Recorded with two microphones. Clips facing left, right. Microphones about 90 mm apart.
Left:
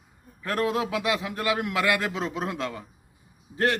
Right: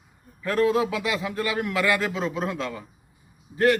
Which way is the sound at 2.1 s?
20° left (ahead or behind).